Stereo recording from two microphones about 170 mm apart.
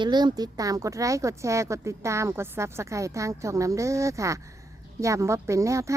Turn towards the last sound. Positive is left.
turn(degrees=-15)  # may be behind; listen again after turning